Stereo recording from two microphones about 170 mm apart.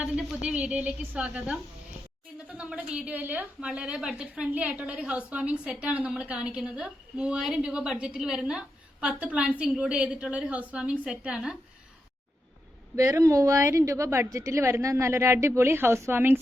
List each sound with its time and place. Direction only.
0.0 s a woman's voice: 5° right (ahead or behind)
13.0 s a woman's voice: 20° right (ahead or behind)